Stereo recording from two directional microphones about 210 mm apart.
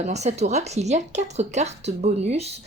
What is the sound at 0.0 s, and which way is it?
Speech, 30° right (ahead or behind).